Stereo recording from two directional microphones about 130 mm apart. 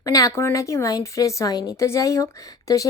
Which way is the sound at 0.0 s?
25° left (ahead or behind).